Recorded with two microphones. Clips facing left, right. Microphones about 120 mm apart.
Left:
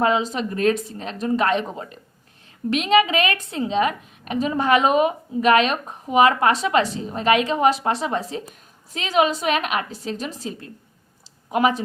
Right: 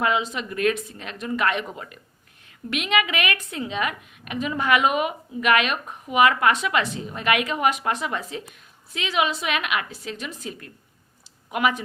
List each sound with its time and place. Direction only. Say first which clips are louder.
0.0 s a woman's voice: left 4 dB; 35° left (ahead or behind)